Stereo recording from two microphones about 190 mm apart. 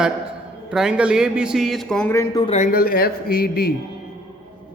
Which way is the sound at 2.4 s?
40° left (ahead or behind).